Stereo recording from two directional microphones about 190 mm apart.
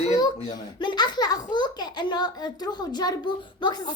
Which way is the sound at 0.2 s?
20° left (ahead or behind).